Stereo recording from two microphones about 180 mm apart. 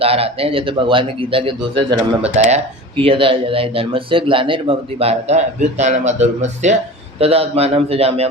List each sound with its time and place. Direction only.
0.0 s a man's voice: 35° right (ahead or behind)
2.3 s speech: 45° right (ahead or behind)
3.0 s a man's voice: 30° right (ahead or behind)